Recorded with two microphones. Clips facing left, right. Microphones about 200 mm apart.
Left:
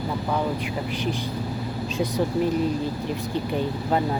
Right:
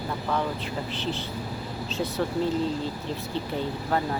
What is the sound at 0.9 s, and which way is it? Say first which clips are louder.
Speech: left 4 dB; 15° left (ahead or behind).